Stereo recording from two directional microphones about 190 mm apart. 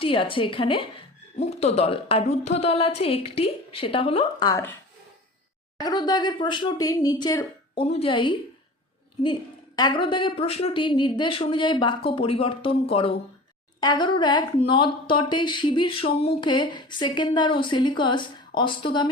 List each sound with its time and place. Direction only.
0.0 s speech: 25° left (ahead or behind)
5.7 s speech: 20° left (ahead or behind)